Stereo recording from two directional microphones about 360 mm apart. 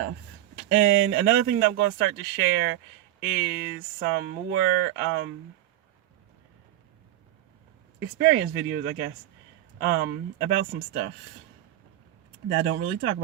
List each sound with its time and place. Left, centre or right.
0.7 s speech: right
7.9 s speech: right
12.5 s speech: right